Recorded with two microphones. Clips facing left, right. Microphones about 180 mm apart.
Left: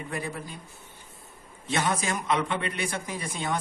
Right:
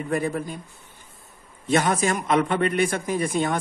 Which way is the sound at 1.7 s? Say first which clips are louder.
Right 6 dB; 50° right (ahead or behind).